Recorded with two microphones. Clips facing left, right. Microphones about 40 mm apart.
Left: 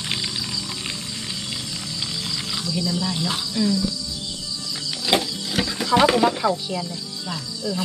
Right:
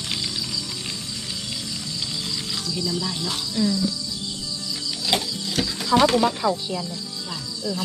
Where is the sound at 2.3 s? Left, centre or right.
Centre.